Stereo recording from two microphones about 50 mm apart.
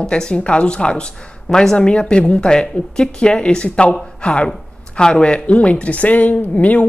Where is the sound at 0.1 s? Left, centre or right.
Left.